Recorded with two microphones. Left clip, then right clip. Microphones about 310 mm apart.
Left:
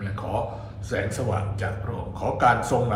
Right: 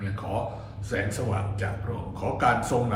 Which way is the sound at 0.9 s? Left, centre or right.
Centre.